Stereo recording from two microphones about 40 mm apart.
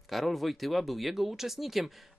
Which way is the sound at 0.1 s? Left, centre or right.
Centre.